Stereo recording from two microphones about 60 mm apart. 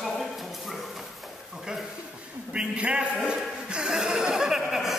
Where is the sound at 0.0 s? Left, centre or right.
Centre.